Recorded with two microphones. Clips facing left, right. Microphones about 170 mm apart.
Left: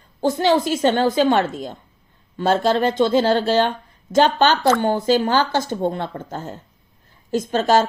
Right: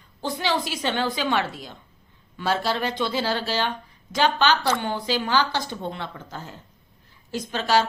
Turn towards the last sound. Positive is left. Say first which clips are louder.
# left 6 dB
turn(degrees=45)  # may be behind; listen again after turning